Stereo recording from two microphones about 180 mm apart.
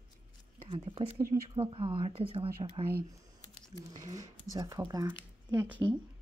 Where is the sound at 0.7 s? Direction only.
30° right (ahead or behind).